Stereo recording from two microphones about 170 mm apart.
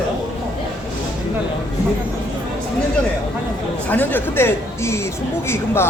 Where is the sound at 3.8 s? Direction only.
10° left (ahead or behind).